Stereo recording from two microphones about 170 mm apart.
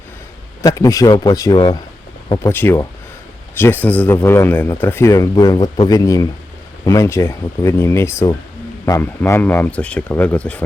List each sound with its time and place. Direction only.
0.6 s speech: 20° left (ahead or behind)
2.5 s speech: 10° left (ahead or behind)